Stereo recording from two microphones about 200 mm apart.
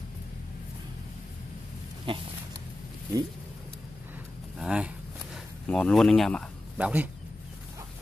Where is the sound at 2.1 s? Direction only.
25° right (ahead or behind).